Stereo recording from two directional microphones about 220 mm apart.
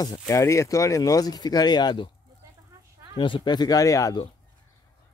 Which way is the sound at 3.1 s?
20° left (ahead or behind).